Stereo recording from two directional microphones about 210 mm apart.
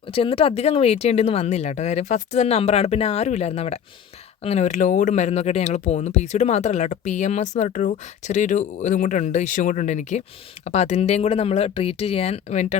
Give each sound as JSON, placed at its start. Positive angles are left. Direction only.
{"t": 0.1, "sound": "speech", "side_deg": 25}